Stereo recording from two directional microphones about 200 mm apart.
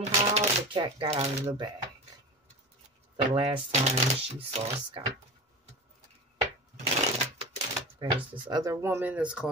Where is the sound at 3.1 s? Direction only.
25° right (ahead or behind).